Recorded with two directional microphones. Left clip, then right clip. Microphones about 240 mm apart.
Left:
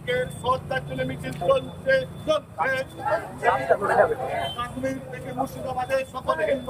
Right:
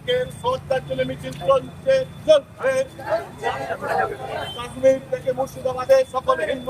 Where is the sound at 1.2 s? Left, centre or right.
Right.